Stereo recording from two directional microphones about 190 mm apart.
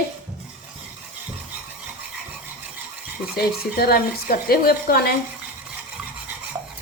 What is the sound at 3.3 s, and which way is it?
Speech, 55° left (ahead or behind).